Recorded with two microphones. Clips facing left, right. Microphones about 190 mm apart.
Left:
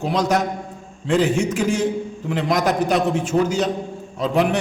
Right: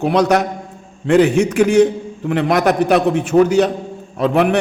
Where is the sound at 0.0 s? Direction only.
65° right (ahead or behind).